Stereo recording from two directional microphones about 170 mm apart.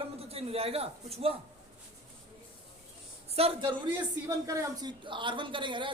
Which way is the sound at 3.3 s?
35° right (ahead or behind).